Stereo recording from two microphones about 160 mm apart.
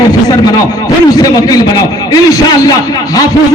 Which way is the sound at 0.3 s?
25° left (ahead or behind).